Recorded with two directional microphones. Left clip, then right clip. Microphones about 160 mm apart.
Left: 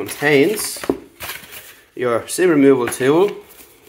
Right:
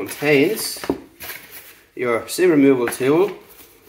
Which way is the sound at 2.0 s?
40° left (ahead or behind).